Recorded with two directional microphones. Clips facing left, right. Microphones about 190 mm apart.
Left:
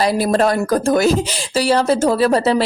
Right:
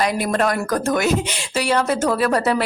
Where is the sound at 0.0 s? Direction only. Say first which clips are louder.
Left 4 dB; 35° left (ahead or behind).